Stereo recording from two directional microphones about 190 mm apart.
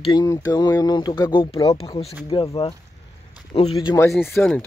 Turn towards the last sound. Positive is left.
turn(degrees=5)  # may be behind; listen again after turning